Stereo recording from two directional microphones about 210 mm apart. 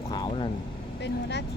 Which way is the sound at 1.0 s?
55° left (ahead or behind).